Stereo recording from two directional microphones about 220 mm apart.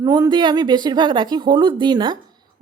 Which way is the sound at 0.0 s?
15° right (ahead or behind).